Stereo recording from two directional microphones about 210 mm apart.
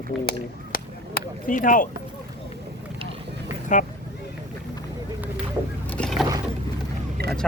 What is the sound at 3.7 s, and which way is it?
Speech, 35° left (ahead or behind).